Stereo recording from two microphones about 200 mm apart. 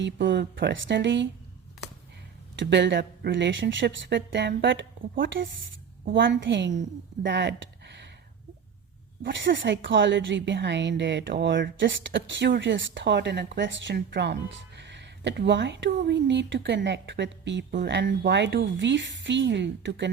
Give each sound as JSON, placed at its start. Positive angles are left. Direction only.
{"t": 0.3, "sound": "a woman's voice", "side_deg": -60}
{"t": 2.6, "sound": "a woman's voice", "side_deg": -60}
{"t": 6.1, "sound": "a woman's voice", "side_deg": -65}
{"t": 7.3, "sound": "a sound", "side_deg": -65}
{"t": 9.2, "sound": "a woman's voice", "side_deg": -65}